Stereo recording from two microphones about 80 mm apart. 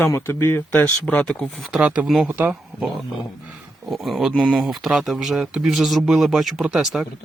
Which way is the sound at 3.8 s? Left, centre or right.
Centre.